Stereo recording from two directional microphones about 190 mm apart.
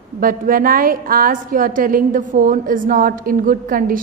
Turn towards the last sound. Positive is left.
turn(degrees=-45)  # may be behind; listen again after turning